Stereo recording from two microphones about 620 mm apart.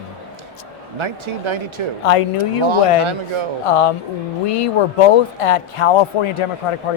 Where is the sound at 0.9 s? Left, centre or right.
Right.